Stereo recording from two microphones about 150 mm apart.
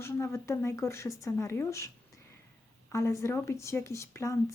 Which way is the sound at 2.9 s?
20° left (ahead or behind).